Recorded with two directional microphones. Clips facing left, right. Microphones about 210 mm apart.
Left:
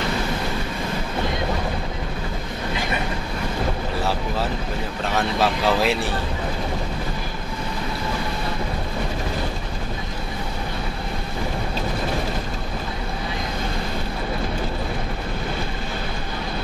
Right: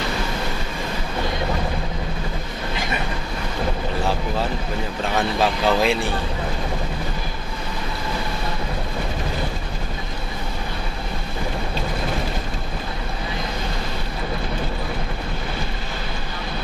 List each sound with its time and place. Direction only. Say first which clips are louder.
5.1 s speech: even; centre (ahead or behind)